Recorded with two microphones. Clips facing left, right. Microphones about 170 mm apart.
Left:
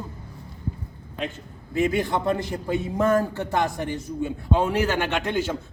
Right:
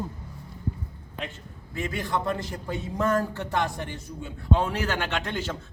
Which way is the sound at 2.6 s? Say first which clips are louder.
Left 4 dB; 15° left (ahead or behind).